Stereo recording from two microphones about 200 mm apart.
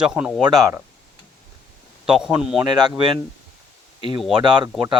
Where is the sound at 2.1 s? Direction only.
Centre (ahead or behind).